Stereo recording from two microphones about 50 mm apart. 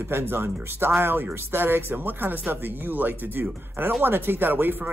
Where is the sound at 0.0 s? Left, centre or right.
Right.